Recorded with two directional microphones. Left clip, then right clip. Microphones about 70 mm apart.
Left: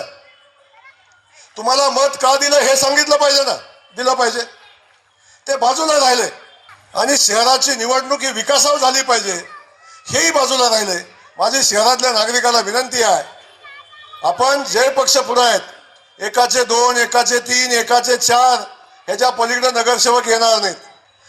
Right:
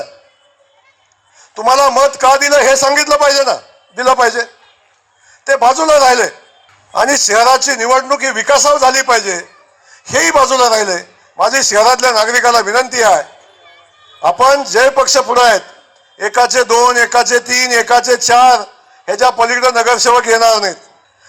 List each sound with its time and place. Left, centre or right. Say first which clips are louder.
1.4 s a man's voice: right 6 dB; right
5.5 s a man's voice: right 6 dB; right